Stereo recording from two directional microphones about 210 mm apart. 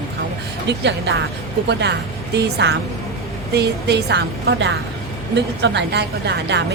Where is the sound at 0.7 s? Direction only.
55° right (ahead or behind).